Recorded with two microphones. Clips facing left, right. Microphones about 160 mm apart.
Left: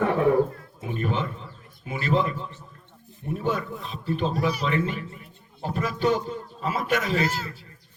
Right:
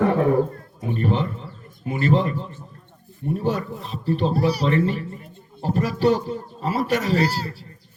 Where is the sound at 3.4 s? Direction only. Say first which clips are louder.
Right 1 dB; 40° right (ahead or behind).